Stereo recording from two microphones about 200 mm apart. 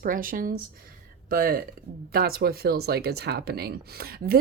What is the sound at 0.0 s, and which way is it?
Speech, 45° right (ahead or behind).